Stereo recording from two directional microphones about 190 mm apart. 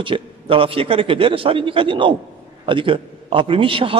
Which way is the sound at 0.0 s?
30° right (ahead or behind).